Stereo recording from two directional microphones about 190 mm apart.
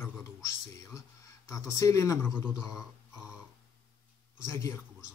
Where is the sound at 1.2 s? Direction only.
15° left (ahead or behind).